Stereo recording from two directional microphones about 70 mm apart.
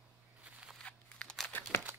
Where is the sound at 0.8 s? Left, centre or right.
Centre.